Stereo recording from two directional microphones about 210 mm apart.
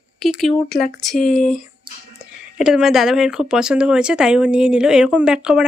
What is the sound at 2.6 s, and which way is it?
Speech, 5° right (ahead or behind).